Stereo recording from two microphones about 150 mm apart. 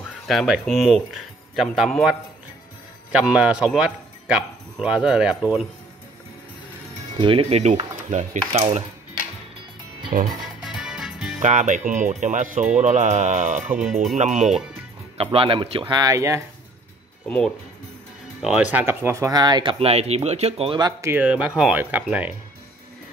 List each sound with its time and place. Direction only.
0.3 s a man's voice: centre (ahead or behind)
7.2 s speech: 35° right (ahead or behind)
10.2 s music: 5° right (ahead or behind)
11.3 s speech: 55° right (ahead or behind)
15.1 s speech: 35° right (ahead or behind)
15.9 s speech: 25° right (ahead or behind)
18.4 s speech: 5° right (ahead or behind); by 20.7 s 45° right (ahead or behind)
20.7 s speech: 25° right (ahead or behind)
21.1 s speech: 10° right (ahead or behind)